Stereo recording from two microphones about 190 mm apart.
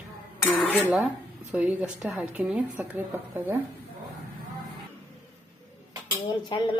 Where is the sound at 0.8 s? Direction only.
10° right (ahead or behind).